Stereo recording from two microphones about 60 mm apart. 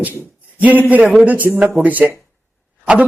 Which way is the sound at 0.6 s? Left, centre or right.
Right.